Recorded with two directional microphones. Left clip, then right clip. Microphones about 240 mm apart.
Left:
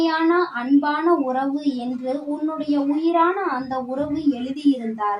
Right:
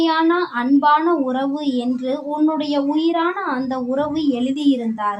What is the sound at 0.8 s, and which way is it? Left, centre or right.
Speech, right.